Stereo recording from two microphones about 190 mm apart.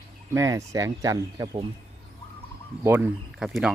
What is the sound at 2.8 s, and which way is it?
Speech, 10° right (ahead or behind).